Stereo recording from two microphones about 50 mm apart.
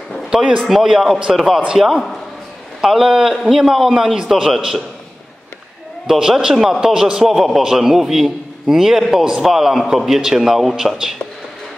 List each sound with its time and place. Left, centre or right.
0.3 s a man's voice: centre
0.8 s a man's voice: centre
6.0 s a man's voice: centre